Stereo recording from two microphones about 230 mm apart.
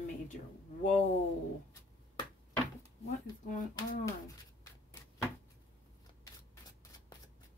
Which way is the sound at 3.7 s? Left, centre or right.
Centre.